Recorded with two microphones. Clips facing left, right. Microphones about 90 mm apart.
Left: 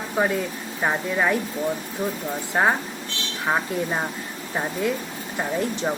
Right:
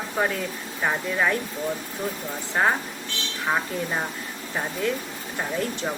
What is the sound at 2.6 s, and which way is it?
A woman's voice, 20° left (ahead or behind).